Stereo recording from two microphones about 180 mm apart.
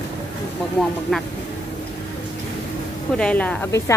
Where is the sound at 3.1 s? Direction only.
5° left (ahead or behind).